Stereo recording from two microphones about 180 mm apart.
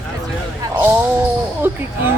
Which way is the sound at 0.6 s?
10° right (ahead or behind).